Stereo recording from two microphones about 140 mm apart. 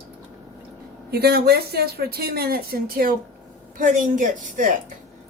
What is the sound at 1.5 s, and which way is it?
Speech, 90° right.